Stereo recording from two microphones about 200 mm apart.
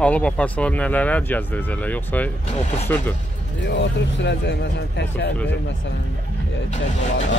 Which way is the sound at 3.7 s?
65° left (ahead or behind).